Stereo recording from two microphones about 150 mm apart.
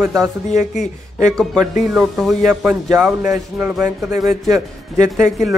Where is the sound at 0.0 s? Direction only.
20° right (ahead or behind).